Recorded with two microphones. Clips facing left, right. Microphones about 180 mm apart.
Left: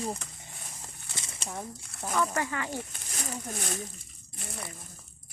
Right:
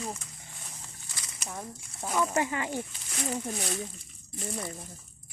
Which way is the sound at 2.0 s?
15° right (ahead or behind).